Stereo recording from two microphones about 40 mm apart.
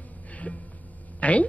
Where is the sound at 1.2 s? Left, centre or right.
Left.